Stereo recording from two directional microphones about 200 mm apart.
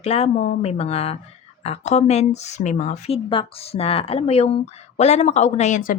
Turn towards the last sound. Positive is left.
turn(degrees=40)  # may be behind; listen again after turning